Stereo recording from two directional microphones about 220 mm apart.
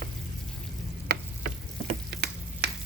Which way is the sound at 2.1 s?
50° right (ahead or behind).